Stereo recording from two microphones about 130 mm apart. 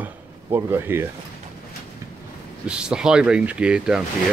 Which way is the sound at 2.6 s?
5° right (ahead or behind).